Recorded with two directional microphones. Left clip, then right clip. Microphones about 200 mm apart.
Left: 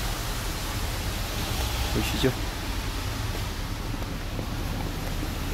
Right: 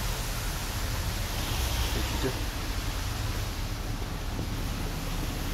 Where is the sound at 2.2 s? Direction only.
55° left (ahead or behind).